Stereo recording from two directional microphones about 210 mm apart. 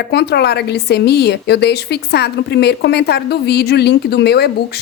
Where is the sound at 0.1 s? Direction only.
50° left (ahead or behind).